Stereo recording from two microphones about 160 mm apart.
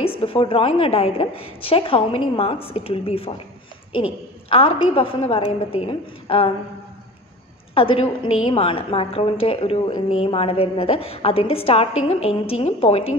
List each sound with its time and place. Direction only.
0.0 s a woman's voice: 35° left (ahead or behind)
7.7 s a woman's voice: 35° left (ahead or behind)